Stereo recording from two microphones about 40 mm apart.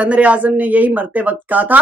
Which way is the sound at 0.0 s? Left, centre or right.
Right.